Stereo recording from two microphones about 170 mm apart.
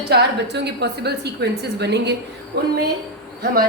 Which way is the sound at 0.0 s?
80° right.